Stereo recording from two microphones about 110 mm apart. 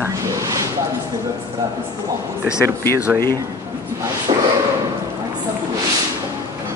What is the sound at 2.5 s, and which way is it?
Speech, 30° left (ahead or behind).